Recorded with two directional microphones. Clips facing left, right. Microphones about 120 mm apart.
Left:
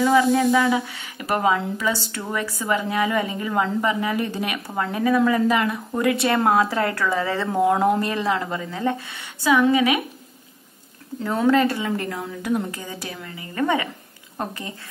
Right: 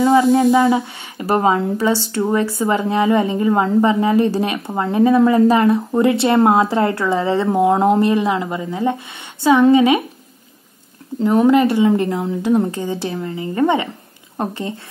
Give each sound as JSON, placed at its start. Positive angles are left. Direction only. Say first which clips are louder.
{"t": 0.0, "sound": "speech", "louder": "right 5 dB", "side_deg": -25}
{"t": 11.2, "sound": "speech", "louder": "right 6 dB", "side_deg": -20}